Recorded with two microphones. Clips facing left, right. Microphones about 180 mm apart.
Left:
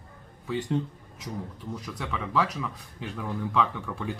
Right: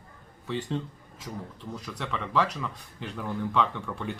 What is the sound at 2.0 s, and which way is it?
Speech, 5° left (ahead or behind).